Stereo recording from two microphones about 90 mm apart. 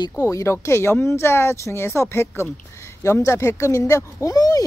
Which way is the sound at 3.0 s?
30° left (ahead or behind).